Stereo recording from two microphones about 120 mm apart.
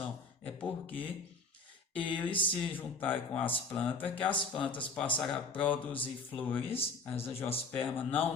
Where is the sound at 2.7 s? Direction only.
15° left (ahead or behind).